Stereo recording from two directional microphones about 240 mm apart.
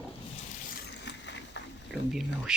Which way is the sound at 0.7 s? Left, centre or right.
Left.